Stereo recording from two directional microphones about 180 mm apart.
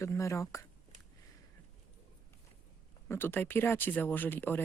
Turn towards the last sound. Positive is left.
turn(degrees=10)  # may be behind; listen again after turning